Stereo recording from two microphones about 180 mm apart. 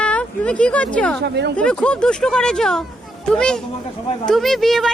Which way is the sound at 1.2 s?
70° right (ahead or behind).